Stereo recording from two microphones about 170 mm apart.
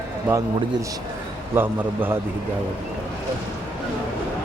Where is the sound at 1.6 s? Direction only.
15° right (ahead or behind).